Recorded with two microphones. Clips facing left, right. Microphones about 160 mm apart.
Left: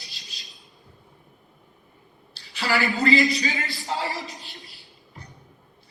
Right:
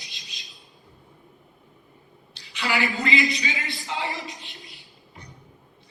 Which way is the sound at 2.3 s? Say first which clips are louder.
Left 2 dB; 35° left (ahead or behind).